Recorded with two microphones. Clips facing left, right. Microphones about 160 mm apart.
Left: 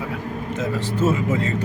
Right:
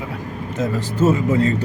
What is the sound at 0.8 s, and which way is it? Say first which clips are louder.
Speech: right 4 dB; 35° right (ahead or behind).